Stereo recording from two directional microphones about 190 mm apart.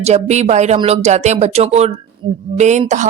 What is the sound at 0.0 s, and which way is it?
Speech, 35° right (ahead or behind).